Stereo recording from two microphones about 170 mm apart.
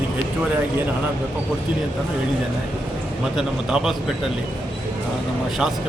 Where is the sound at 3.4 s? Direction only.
Centre (ahead or behind).